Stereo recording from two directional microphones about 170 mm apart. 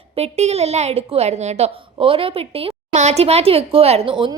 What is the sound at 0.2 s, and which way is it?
A woman's voice, 40° right (ahead or behind).